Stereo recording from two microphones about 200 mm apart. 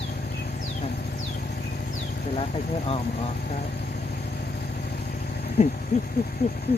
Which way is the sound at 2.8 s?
30° left (ahead or behind).